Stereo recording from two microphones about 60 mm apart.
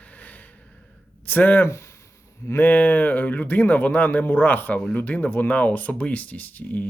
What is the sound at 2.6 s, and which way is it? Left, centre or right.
Speech, left.